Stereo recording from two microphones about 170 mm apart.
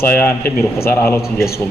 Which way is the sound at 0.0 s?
15° left (ahead or behind).